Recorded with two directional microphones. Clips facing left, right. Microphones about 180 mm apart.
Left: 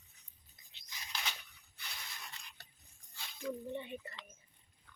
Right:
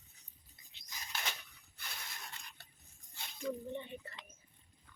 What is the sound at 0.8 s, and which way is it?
Biting, 45° right (ahead or behind).